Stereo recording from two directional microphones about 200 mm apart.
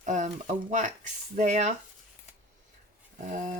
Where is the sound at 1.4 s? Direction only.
35° right (ahead or behind).